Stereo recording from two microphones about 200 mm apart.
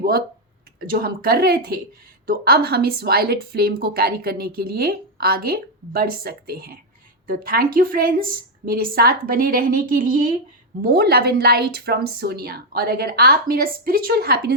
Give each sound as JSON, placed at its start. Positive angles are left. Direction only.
{"t": 0.9, "sound": "a woman's voice", "side_deg": -50}